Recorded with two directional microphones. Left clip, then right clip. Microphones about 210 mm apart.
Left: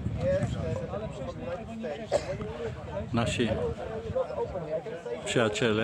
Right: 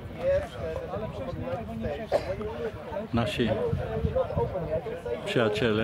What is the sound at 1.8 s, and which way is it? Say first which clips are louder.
A man's voice: right 1 dB; 20° left (ahead or behind).